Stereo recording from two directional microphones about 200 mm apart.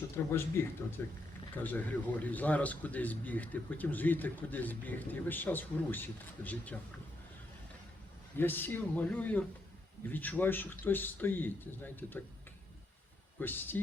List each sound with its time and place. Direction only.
0.3 s a man's voice: 10° left (ahead or behind)
8.4 s a man's voice: 10° left (ahead or behind)
13.4 s a man's voice: 10° left (ahead or behind)